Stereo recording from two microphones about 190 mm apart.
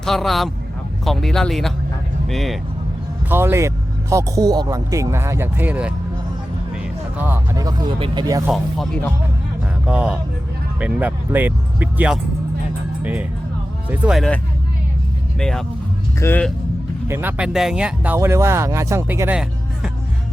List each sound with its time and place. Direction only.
0.0 s speech: centre (ahead or behind)
3.2 s speech: 10° right (ahead or behind)
7.2 s speech: 10° right (ahead or behind)
8.4 s speech: centre (ahead or behind)
15.4 s speech: 5° left (ahead or behind)
17.1 s speech: 10° right (ahead or behind)